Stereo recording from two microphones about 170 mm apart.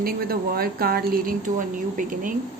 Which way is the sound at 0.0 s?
60° right (ahead or behind).